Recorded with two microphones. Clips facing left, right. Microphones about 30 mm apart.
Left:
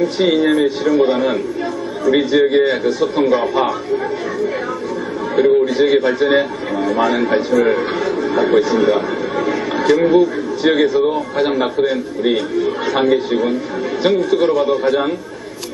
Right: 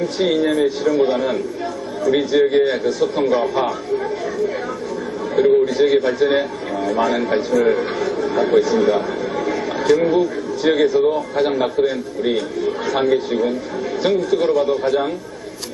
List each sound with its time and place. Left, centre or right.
0.3 s a man's voice: centre
5.4 s a man's voice: centre